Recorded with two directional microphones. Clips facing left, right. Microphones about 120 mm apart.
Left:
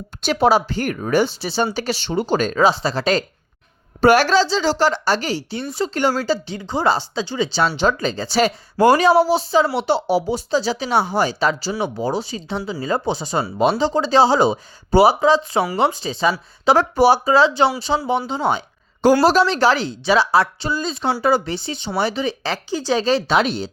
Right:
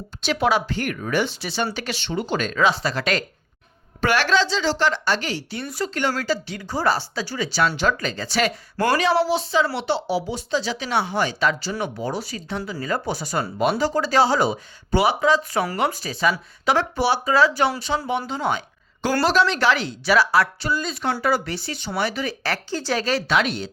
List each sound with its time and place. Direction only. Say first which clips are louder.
0.2 s speech: left 5 dB; 40° left (ahead or behind)
9.0 s speech: left 5 dB; 40° left (ahead or behind); by 16.3 s 25° left (ahead or behind)
16.6 s speech: left 6 dB; 40° left (ahead or behind)
17.3 s speech: left 3 dB; 25° left (ahead or behind)
19.2 s speech: left 4 dB; 40° left (ahead or behind)